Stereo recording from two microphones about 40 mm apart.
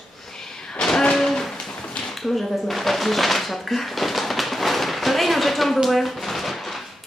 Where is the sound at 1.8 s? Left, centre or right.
Left.